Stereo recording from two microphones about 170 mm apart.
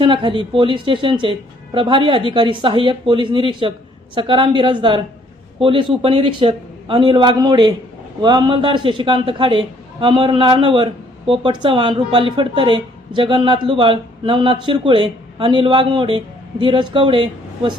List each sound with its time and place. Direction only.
0.0 s speech: 30° right (ahead or behind)